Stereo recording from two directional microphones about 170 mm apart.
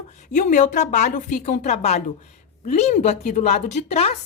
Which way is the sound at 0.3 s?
45° left (ahead or behind).